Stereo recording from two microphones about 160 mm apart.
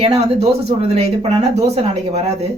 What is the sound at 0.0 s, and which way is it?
Speech, 40° right (ahead or behind).